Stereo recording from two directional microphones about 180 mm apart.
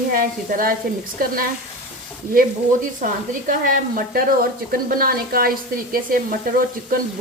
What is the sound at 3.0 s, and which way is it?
Speech, 50° right (ahead or behind).